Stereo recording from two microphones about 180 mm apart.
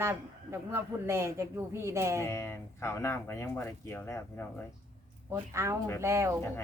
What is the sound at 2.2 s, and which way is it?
Speech, 15° left (ahead or behind).